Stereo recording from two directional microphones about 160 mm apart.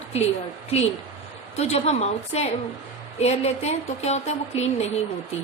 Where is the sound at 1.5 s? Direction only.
45° left (ahead or behind).